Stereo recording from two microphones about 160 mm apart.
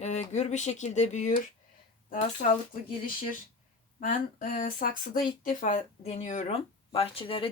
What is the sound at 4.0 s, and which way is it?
Speech, 60° left (ahead or behind).